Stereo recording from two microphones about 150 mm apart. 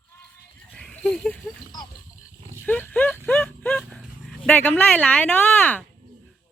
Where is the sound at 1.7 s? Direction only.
25° left (ahead or behind).